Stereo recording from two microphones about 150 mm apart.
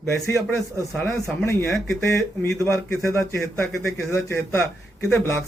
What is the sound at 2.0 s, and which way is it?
A man's voice, 15° left (ahead or behind).